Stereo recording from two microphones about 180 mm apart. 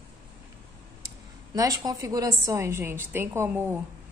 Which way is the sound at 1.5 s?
20° right (ahead or behind).